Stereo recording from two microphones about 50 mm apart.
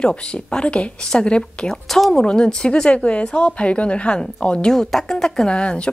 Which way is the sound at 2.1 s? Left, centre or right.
Centre.